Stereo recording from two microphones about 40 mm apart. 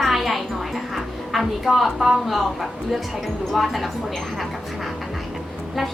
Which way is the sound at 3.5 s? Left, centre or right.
Centre.